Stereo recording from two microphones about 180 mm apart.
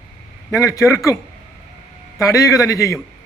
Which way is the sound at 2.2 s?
15° left (ahead or behind).